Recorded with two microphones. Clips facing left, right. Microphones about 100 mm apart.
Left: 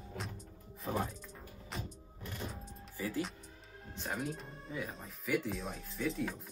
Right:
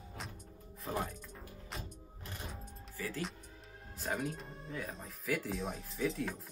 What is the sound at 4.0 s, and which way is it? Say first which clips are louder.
Speech: right 1 dB; centre (ahead or behind).